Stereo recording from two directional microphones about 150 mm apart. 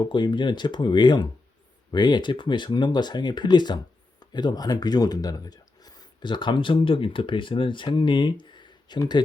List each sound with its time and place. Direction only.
0.0 s speech: 30° left (ahead or behind)